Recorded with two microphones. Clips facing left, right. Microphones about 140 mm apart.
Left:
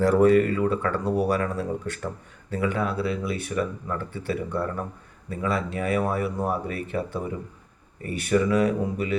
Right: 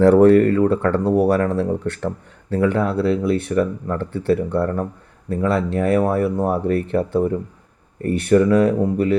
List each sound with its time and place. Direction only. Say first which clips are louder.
0.0 s speech: right 7 dB; 65° right (ahead or behind)